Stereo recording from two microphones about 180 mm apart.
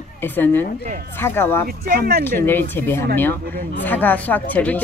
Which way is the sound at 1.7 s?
55° right (ahead or behind).